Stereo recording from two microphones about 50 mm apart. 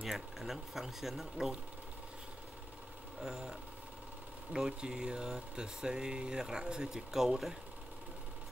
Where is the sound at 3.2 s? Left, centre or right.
Centre.